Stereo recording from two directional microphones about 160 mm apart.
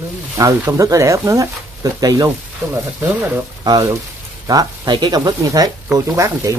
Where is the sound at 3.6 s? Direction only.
25° right (ahead or behind).